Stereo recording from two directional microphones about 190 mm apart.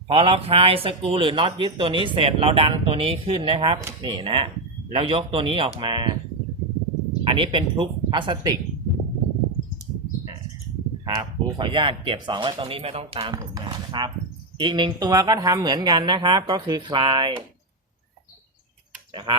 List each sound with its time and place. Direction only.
0.1 s speech: 30° right (ahead or behind)
7.3 s speech: 25° right (ahead or behind)
11.0 s speech: 25° right (ahead or behind)
19.1 s speech: 25° right (ahead or behind)